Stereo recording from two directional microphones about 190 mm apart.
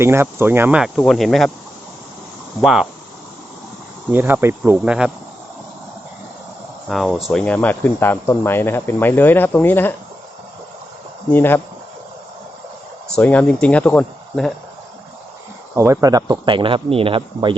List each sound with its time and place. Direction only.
0.0 s speech: 15° right (ahead or behind)
2.6 s speech: centre (ahead or behind)
4.1 s speech: 10° right (ahead or behind)
6.8 s speech: centre (ahead or behind)
11.3 s speech: 10° left (ahead or behind)
13.1 s speech: 5° left (ahead or behind)
15.7 s speech: 15° right (ahead or behind)